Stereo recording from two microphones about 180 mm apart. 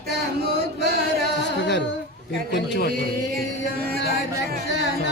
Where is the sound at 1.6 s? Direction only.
75° left (ahead or behind).